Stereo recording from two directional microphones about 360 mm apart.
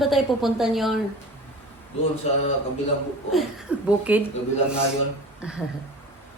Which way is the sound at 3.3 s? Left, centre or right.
Centre.